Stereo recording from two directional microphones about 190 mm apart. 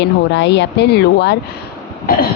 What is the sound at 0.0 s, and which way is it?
Speech, 65° left (ahead or behind).